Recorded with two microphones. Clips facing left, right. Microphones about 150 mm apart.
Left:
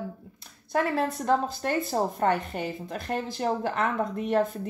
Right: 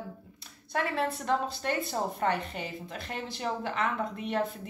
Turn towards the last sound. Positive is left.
turn(degrees=45)  # may be behind; listen again after turning